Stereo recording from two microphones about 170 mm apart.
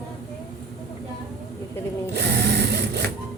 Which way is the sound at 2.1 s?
85° right.